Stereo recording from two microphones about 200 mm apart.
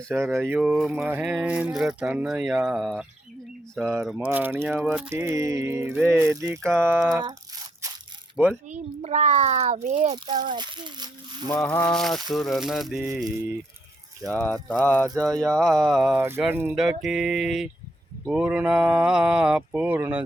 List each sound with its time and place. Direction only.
0.1 s speech: 10° right (ahead or behind)
4.3 s a sound: 10° right (ahead or behind)
8.4 s speech: 5° right (ahead or behind)
8.7 s a child's voice: 35° right (ahead or behind)
11.4 s speech: 10° left (ahead or behind)
13.0 s a sound: 15° right (ahead or behind)
14.3 s music: 10° left (ahead or behind)
15.2 s speech: 5° left (ahead or behind)
16.1 s a sound: 10° right (ahead or behind)
16.7 s speech: centre (ahead or behind)